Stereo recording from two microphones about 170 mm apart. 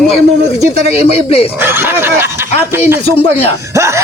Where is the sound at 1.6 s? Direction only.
15° right (ahead or behind).